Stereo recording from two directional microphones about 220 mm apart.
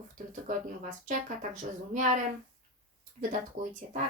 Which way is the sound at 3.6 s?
60° right (ahead or behind).